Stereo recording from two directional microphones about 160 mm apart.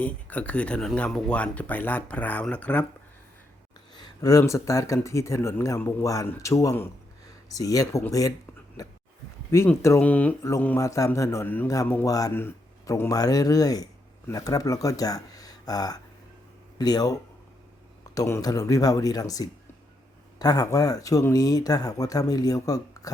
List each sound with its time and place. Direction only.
0.0 s speech: 10° left (ahead or behind)
3.9 s speech: 25° left (ahead or behind)
9.5 s speech: 15° left (ahead or behind)